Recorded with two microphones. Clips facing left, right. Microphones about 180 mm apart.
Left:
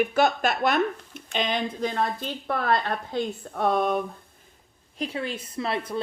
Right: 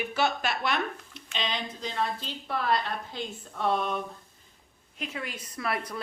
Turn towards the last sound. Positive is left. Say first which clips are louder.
# left 4 dB
turn(degrees=25)  # may be behind; listen again after turning